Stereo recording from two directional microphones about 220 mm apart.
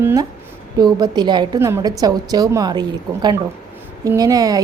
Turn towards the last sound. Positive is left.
turn(degrees=-15)  # may be behind; listen again after turning